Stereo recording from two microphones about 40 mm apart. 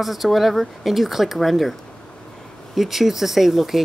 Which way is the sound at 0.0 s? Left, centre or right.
Centre.